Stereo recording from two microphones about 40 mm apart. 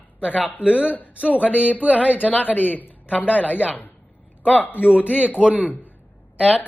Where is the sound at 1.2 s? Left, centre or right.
Left.